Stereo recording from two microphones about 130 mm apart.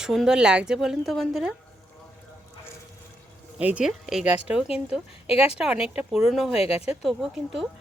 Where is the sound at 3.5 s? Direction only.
10° right (ahead or behind).